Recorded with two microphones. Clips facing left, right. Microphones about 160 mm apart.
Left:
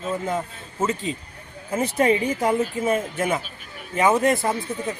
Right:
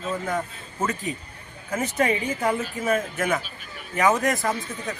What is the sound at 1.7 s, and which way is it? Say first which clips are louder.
Speech: left 4 dB; 30° left (ahead or behind).